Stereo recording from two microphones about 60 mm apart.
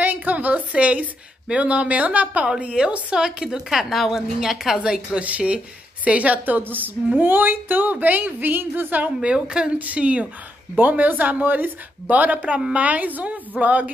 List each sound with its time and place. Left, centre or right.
0.0 s a sound: right
1.5 s a woman's voice: right
9.3 s a woman's voice: centre